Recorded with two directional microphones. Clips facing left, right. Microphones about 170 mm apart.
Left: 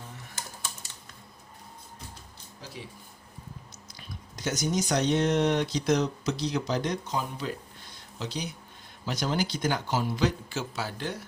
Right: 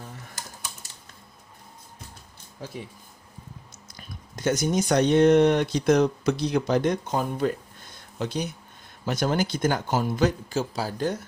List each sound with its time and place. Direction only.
2.6 s speech: 50° right (ahead or behind)
3.8 s speech: 50° right (ahead or behind)